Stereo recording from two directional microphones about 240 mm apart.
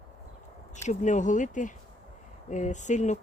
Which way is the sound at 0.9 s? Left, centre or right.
Left.